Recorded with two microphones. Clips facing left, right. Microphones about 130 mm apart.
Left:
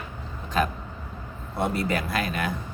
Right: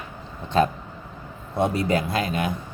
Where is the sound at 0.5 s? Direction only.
30° right (ahead or behind).